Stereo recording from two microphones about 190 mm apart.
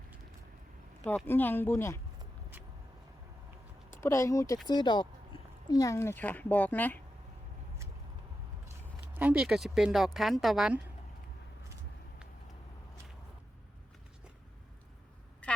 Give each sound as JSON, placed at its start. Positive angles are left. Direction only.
{"t": 1.0, "sound": "a child's voice", "side_deg": 10}
{"t": 4.0, "sound": "a child's voice", "side_deg": 15}
{"t": 9.0, "sound": "speech", "side_deg": -5}
{"t": 15.4, "sound": "a sound", "side_deg": 5}